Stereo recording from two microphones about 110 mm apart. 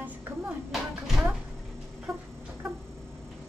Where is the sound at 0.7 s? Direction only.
Centre (ahead or behind).